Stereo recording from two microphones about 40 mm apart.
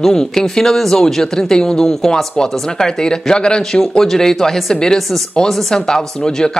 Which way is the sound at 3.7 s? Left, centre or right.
Centre.